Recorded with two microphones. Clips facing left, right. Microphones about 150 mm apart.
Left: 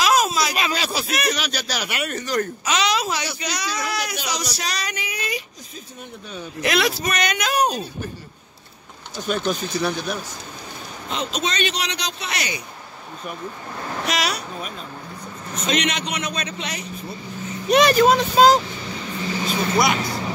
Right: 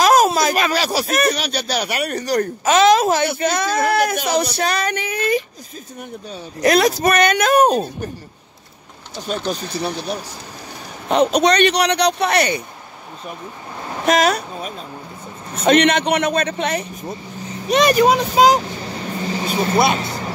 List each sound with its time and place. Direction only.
0.0 s a sound: 45° right (ahead or behind)
0.7 s speech: 35° right (ahead or behind)
9.3 s speech: 35° right (ahead or behind)
11.1 s a man's voice: 60° right (ahead or behind)
14.0 s speech: 50° right (ahead or behind)
15.6 s a man's voice: 60° right (ahead or behind)
17.6 s speech: centre (ahead or behind)
18.0 s speech: 10° right (ahead or behind)
19.7 s speech: 25° right (ahead or behind)